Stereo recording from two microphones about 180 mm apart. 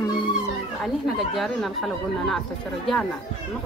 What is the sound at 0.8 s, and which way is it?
Speech, centre (ahead or behind).